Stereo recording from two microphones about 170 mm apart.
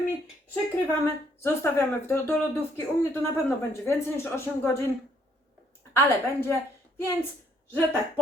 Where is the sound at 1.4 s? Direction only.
15° left (ahead or behind).